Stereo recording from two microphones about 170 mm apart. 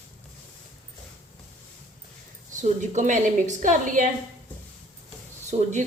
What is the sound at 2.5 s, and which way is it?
Speech, 45° right (ahead or behind).